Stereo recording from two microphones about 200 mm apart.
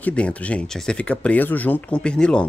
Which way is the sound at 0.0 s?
5° left (ahead or behind).